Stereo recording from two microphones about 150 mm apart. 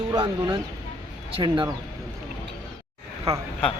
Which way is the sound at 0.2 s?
35° right (ahead or behind).